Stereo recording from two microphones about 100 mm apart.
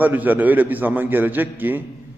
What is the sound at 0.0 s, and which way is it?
A man's voice, 20° right (ahead or behind).